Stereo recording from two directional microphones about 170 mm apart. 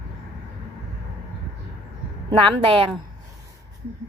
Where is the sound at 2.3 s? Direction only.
30° right (ahead or behind).